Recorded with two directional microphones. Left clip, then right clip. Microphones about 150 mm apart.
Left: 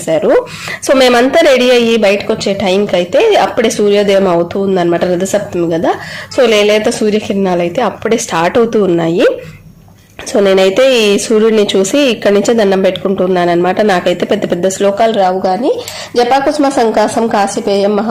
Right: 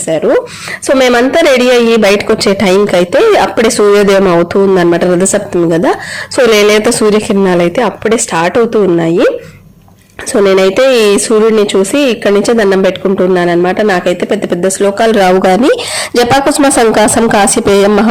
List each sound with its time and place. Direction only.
0.1 s a woman's voice: 5° right (ahead or behind); by 2.0 s 25° right (ahead or behind)
2.0 s speech: 40° right (ahead or behind); by 9.3 s 15° right (ahead or behind)
10.3 s speech: 20° right (ahead or behind)
15.1 s speech: 50° right (ahead or behind)